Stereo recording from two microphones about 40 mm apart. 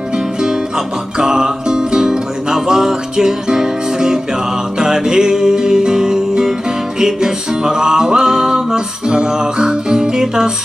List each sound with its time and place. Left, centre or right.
0.4 s music: centre